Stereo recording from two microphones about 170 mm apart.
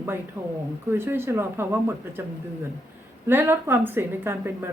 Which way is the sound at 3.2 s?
15° right (ahead or behind).